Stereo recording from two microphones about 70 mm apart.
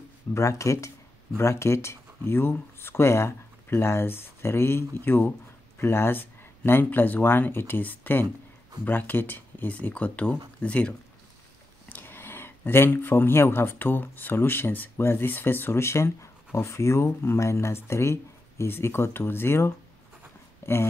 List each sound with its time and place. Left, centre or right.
0.3 s speech: left; by 11.0 s centre
11.9 s speech: left